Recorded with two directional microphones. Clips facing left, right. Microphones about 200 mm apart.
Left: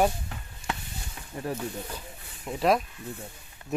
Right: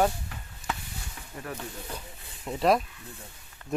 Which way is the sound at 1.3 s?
25° left (ahead or behind).